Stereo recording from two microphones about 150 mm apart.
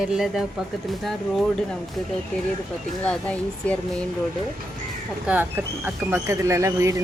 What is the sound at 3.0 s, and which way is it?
Speech, 10° left (ahead or behind).